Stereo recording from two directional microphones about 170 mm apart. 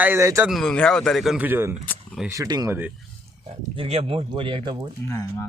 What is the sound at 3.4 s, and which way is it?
Speech, 35° right (ahead or behind).